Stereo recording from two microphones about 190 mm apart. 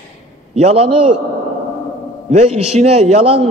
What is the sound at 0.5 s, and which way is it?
Speech, 30° right (ahead or behind).